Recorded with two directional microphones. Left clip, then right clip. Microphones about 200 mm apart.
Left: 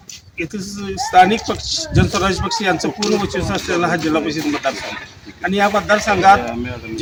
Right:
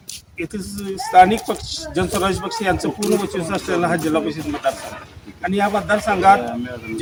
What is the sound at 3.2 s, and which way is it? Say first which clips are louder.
Speech: left 2 dB; 10° right (ahead or behind).